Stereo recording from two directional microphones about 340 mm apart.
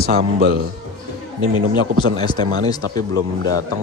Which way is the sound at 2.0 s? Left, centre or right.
Centre.